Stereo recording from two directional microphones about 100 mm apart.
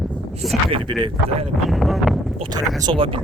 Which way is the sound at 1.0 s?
80° right.